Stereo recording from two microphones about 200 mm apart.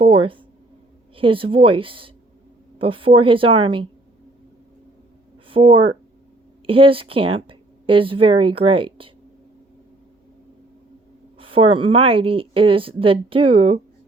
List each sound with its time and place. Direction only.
0.0 s speech: 25° right (ahead or behind)
5.5 s speech: 25° right (ahead or behind)
11.3 s speech: 25° right (ahead or behind)